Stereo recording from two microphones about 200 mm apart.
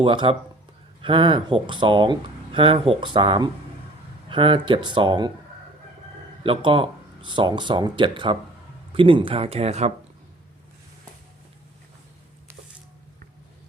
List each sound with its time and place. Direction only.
0.0 s speech: 25° right (ahead or behind)
6.4 s speech: 25° right (ahead or behind)